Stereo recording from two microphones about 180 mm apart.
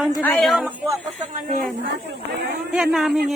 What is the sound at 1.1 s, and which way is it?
Speech, 45° right (ahead or behind).